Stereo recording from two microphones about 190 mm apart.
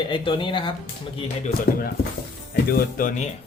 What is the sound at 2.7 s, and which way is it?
Speech, 50° left (ahead or behind).